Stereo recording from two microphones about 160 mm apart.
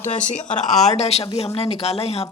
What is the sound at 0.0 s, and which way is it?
Speech, 50° left (ahead or behind).